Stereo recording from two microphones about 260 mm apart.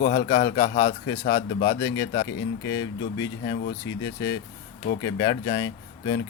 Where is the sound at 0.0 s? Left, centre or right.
Left.